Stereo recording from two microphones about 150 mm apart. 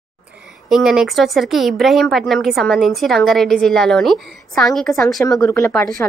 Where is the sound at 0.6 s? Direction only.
Centre (ahead or behind).